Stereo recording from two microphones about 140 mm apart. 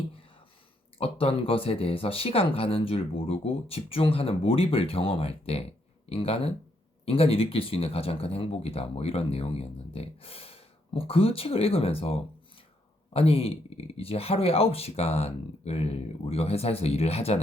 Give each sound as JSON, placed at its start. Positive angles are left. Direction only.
{"t": 0.9, "sound": "speech", "side_deg": 45}